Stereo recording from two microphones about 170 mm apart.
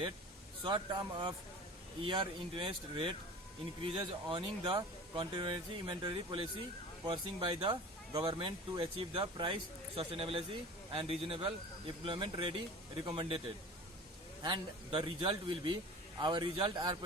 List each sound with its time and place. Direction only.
0.6 s speech: 25° right (ahead or behind)
14.4 s speech: 25° right (ahead or behind)